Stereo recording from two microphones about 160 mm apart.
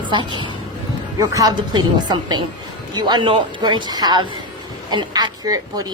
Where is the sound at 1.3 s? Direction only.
20° right (ahead or behind).